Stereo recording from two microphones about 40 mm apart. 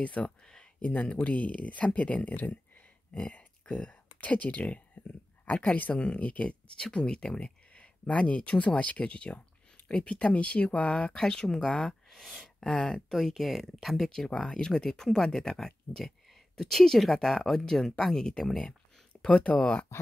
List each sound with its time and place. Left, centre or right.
0.0 s speech: left
3.3 s a sound: left
5.5 s speech: left
6.8 s speech: left
7.7 s speech: left
11.1 s speech: centre
12.1 s a sound: centre
12.6 s speech: left
13.1 s speech: centre
14.1 s speech: centre
19.3 s speech: left